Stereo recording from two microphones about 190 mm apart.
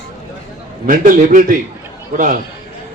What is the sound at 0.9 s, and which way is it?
Speech, 45° right (ahead or behind).